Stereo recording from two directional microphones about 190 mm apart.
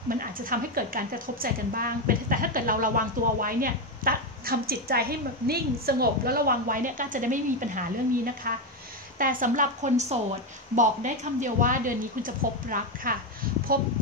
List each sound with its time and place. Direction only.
0.1 s a woman's voice: 50° right (ahead or behind)